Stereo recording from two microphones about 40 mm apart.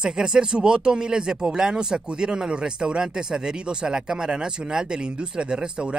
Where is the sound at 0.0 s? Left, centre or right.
Centre.